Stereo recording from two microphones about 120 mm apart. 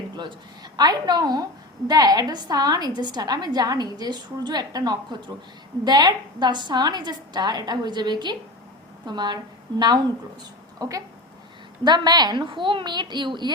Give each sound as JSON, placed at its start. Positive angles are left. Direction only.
{"t": 0.2, "sound": "a woman's voice", "side_deg": -35}